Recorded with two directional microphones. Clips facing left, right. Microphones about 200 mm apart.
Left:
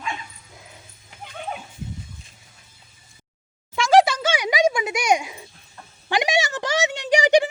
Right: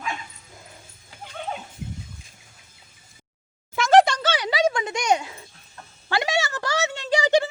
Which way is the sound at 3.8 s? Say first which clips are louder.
Even; centre (ahead or behind).